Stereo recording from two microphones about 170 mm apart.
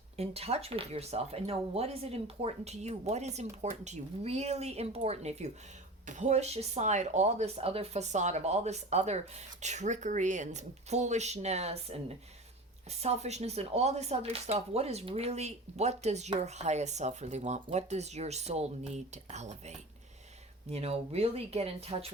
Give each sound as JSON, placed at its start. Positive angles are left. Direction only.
{"t": 0.2, "sound": "speech", "side_deg": -35}